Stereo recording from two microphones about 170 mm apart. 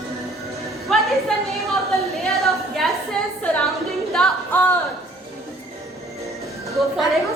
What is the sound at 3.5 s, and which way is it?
Music, centre (ahead or behind).